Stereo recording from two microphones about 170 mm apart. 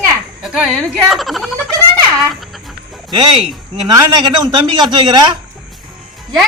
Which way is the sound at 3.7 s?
25° right (ahead or behind).